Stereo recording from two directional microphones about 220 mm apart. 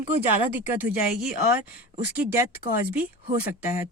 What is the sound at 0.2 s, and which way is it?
Speech, 10° right (ahead or behind).